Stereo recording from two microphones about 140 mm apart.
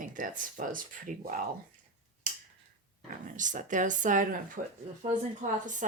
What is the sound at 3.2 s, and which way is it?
Speech, 65° right (ahead or behind).